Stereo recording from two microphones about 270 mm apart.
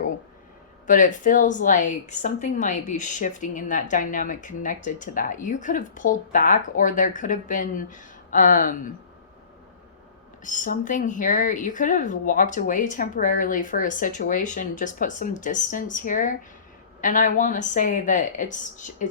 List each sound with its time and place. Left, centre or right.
0.9 s a woman's voice: left
10.4 s a woman's voice: left